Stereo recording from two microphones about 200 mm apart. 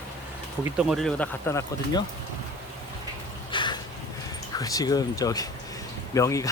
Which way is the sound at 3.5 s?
25° left (ahead or behind).